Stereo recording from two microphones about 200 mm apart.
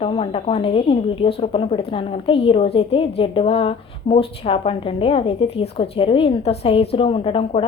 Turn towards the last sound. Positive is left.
turn(degrees=30)  # may be behind; listen again after turning